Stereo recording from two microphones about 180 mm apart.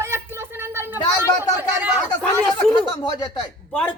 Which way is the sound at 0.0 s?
15° right (ahead or behind).